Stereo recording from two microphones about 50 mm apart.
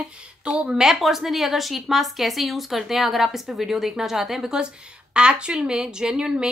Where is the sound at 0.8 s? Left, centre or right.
Centre.